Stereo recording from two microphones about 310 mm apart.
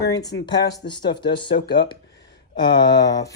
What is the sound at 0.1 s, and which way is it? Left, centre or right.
Speech, centre.